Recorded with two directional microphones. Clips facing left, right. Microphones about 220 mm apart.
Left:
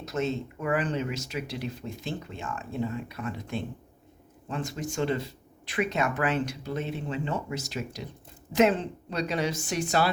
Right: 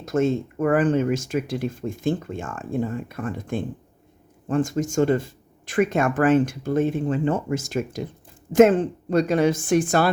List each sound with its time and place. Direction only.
0.0 s speech: 50° right (ahead or behind)